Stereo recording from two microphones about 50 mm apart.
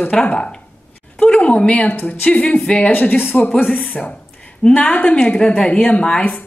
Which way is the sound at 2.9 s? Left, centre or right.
Left.